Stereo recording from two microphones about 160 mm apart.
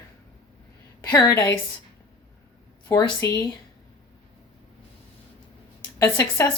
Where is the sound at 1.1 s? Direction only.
25° left (ahead or behind).